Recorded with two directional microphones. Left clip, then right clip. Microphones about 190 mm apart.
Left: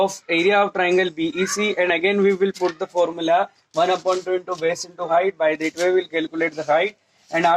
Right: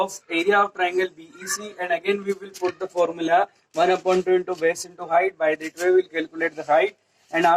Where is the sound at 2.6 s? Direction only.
20° left (ahead or behind).